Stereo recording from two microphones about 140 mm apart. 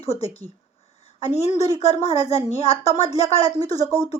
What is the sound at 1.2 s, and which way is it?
A woman's voice, 50° left (ahead or behind).